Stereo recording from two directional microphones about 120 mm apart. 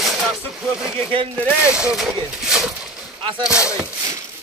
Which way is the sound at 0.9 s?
50° right (ahead or behind).